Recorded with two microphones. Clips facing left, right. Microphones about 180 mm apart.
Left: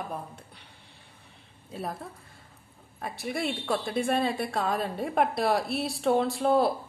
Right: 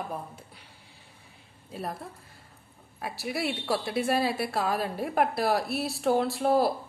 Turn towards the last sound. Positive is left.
turn(degrees=0)  # may be behind; listen again after turning